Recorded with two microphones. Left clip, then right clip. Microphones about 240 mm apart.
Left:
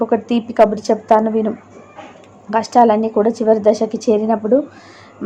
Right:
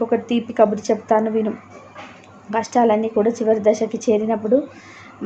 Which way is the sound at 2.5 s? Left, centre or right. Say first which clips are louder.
Left 5 dB; centre.